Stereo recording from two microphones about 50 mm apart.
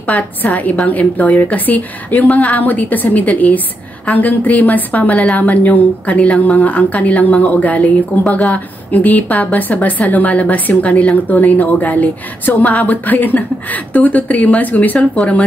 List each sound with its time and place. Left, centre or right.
0.0 s a woman's voice: left